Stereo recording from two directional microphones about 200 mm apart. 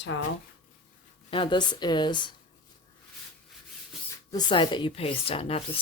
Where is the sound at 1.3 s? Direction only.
25° left (ahead or behind).